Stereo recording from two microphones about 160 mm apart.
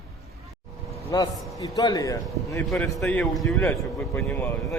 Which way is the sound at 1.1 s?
25° left (ahead or behind).